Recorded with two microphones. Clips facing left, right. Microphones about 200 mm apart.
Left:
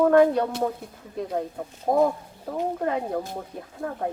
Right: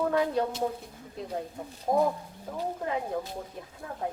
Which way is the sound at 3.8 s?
70° left (ahead or behind).